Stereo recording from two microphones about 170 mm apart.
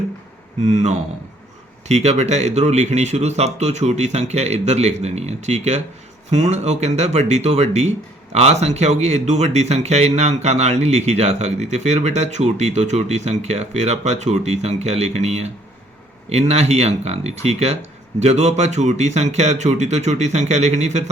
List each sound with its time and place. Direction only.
0.6 s speech: 45° right (ahead or behind)